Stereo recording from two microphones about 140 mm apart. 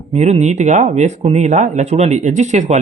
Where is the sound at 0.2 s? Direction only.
55° right (ahead or behind).